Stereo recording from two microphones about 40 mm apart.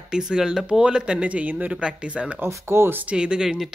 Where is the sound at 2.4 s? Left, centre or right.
Right.